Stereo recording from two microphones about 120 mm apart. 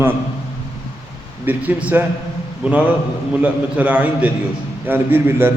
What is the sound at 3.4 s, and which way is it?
A man's voice, 10° right (ahead or behind).